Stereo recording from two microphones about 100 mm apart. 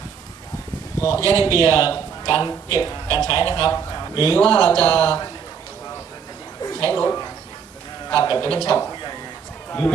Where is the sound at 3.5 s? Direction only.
40° left (ahead or behind).